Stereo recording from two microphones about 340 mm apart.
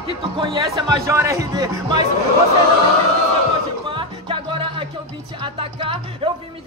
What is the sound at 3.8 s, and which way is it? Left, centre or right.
Music, centre.